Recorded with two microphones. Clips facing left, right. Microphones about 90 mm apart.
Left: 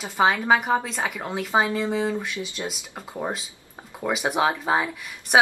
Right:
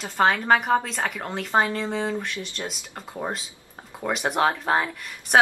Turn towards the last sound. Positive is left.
turn(degrees=5)  # may be behind; listen again after turning